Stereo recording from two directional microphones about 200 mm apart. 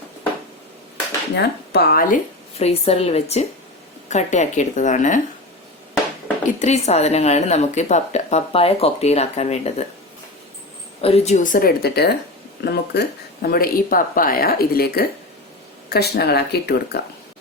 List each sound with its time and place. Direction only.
1.4 s speech: 55° left (ahead or behind); by 5.2 s 40° left (ahead or behind)
6.5 s speech: 35° left (ahead or behind)
11.0 s a woman's voice: 30° left (ahead or behind); by 17.0 s 55° left (ahead or behind)